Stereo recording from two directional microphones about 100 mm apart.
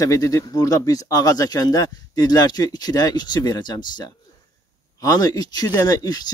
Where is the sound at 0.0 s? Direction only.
35° left (ahead or behind).